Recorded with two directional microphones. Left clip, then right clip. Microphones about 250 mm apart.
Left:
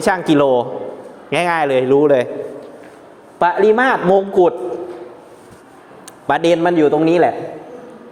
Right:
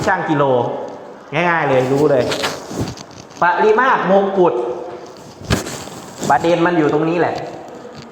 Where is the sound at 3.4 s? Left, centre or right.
Left.